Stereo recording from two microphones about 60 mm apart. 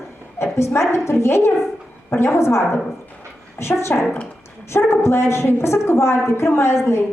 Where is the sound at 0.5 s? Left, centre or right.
Left.